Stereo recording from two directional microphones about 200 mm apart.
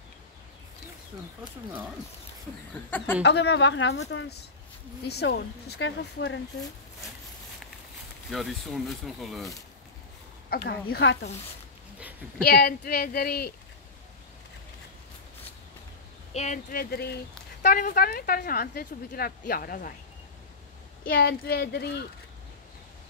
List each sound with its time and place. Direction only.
2.7 s speech: 10° left (ahead or behind)
3.2 s speech: 60° left (ahead or behind)
8.3 s speech: centre (ahead or behind)
10.5 s speech: 50° left (ahead or behind)
12.4 s speech: 50° left (ahead or behind)
16.3 s speech: 35° left (ahead or behind)
16.9 s speech: 55° left (ahead or behind)
21.1 s speech: 50° left (ahead or behind)